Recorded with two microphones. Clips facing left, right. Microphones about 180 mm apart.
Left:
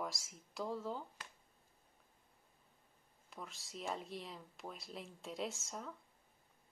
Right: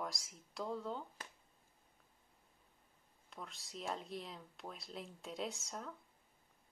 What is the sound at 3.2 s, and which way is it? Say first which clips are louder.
Speech: even; centre (ahead or behind).